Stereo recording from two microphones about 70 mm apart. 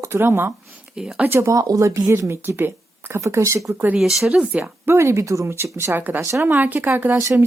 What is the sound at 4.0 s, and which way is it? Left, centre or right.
Speech, centre.